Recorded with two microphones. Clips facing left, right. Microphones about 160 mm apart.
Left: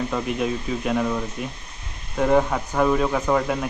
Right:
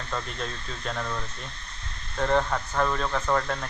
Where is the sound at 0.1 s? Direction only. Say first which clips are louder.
Left 9 dB; 10° left (ahead or behind).